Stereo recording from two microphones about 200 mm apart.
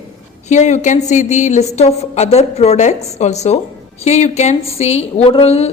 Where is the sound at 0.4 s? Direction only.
35° left (ahead or behind).